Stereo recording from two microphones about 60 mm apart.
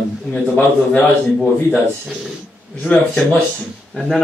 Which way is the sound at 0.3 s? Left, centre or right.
Left.